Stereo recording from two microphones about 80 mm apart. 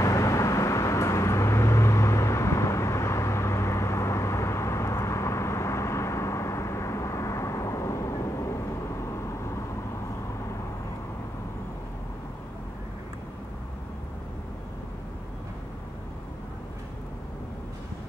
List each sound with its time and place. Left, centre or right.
0.0 s vehicle: left